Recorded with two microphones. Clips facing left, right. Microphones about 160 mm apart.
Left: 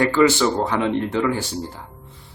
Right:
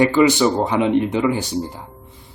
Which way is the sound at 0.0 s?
15° right (ahead or behind).